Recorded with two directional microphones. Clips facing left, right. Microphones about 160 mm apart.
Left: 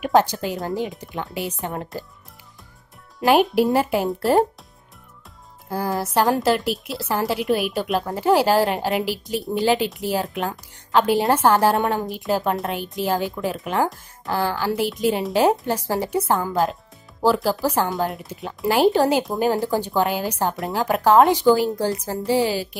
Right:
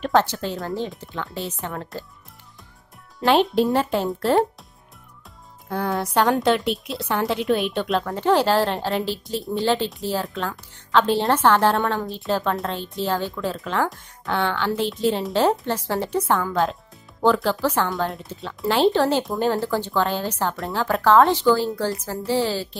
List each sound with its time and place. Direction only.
0.0 s a woman's voice: 15° left (ahead or behind)
3.2 s a woman's voice: 10° left (ahead or behind)
5.7 s a woman's voice: 5° left (ahead or behind)
13.8 s a woman's voice: 5° left (ahead or behind)